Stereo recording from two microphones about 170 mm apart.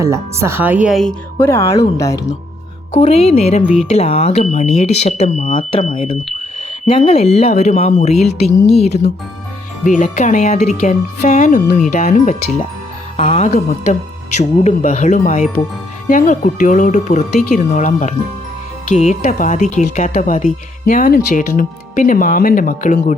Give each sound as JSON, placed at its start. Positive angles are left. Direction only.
{"t": 0.0, "sound": "speech", "side_deg": -15}
{"t": 1.4, "sound": "speech", "side_deg": 15}
{"t": 2.9, "sound": "speech", "side_deg": 35}
{"t": 13.1, "sound": "speech", "side_deg": 35}